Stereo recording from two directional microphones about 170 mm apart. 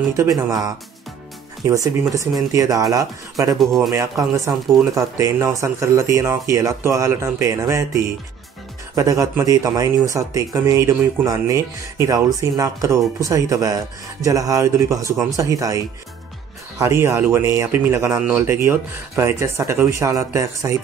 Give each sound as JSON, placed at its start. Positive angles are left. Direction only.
{"t": 0.1, "sound": "speech", "side_deg": -15}
{"t": 3.5, "sound": "speech", "side_deg": 0}
{"t": 3.9, "sound": "speech", "side_deg": -20}